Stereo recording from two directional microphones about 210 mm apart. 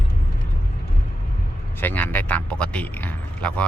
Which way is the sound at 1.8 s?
10° left (ahead or behind).